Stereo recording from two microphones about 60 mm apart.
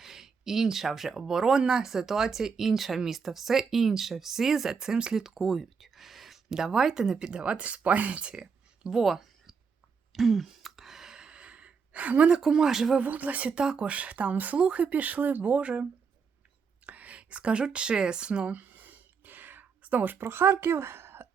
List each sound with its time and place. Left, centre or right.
0.0 s speech: centre; by 8.3 s right
8.3 s a sound: centre
12.3 s speech: centre
13.0 s speech: right
13.6 s speech: centre
16.8 s a sound: right